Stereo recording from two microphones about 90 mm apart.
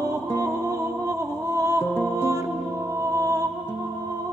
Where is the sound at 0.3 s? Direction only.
30° left (ahead or behind).